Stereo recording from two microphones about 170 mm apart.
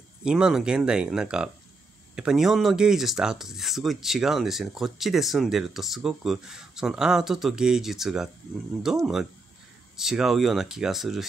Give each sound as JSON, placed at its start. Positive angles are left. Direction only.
{"t": 0.2, "sound": "speech", "side_deg": -5}